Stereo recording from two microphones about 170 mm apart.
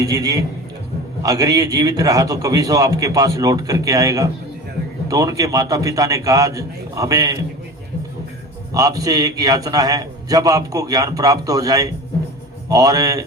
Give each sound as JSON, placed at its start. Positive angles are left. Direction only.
{"t": 0.0, "sound": "a man's voice", "side_deg": -20}
{"t": 8.7, "sound": "a man's voice", "side_deg": -20}